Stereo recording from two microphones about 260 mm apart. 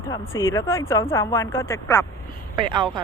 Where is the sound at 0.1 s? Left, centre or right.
Centre.